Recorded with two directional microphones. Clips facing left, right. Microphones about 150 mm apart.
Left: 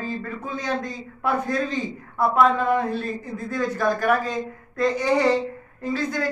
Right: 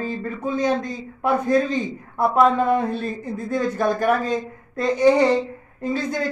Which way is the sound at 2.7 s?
25° right (ahead or behind).